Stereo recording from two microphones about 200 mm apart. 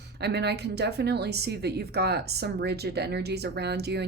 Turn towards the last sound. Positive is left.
turn(degrees=-55)  # may be behind; listen again after turning